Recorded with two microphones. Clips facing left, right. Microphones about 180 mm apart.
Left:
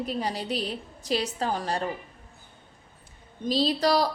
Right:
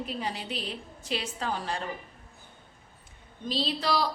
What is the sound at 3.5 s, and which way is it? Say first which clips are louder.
Speech: left 6 dB; 40° left (ahead or behind).